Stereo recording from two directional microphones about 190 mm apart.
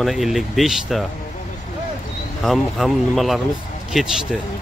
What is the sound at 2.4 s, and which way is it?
Speech, centre (ahead or behind).